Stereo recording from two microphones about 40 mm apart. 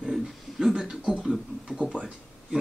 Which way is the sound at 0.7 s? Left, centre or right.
Centre.